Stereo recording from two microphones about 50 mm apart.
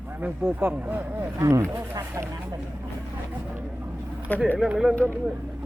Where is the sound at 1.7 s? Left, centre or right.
Right.